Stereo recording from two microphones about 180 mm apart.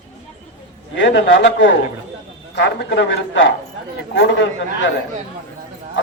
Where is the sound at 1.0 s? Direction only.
90° left.